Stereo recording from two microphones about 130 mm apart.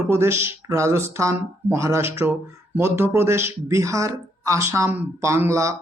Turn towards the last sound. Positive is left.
turn(degrees=-20)  # may be behind; listen again after turning